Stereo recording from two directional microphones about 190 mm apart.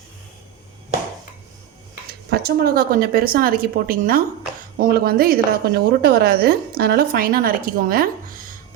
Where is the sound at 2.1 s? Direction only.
55° right (ahead or behind).